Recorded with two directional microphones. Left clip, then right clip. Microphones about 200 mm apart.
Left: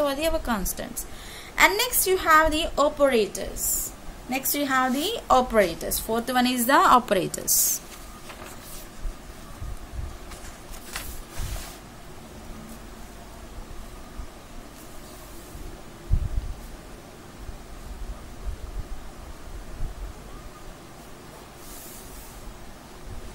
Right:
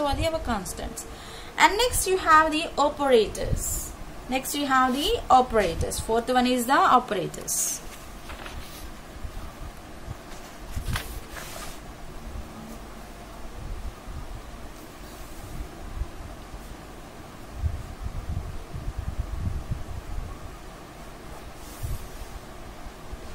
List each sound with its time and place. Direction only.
0.0 s a woman's voice: 50° left (ahead or behind)